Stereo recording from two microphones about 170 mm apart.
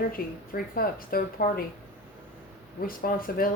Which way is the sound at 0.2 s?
60° left (ahead or behind).